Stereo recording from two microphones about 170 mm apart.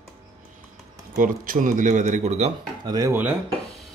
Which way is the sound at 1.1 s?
55° right (ahead or behind).